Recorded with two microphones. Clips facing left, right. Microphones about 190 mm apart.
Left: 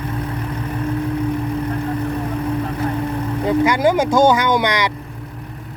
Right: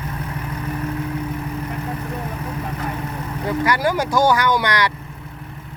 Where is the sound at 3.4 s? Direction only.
20° left (ahead or behind).